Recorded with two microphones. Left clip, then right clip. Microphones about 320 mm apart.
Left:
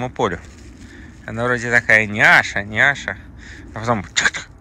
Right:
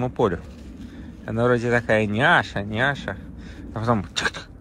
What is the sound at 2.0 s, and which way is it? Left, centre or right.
Speech, centre.